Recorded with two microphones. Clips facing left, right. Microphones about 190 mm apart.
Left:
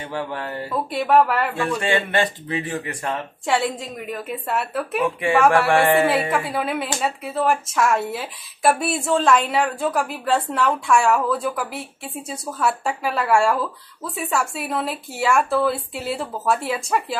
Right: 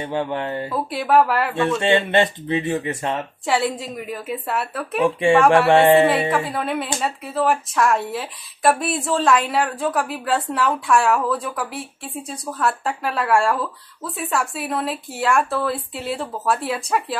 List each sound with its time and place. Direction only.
0.0 s speech: 20° right (ahead or behind)
0.7 s speech: centre (ahead or behind)
1.6 s speech: 25° right (ahead or behind)
3.4 s speech: centre (ahead or behind)
5.7 s speech: 25° right (ahead or behind)
6.3 s speech: centre (ahead or behind)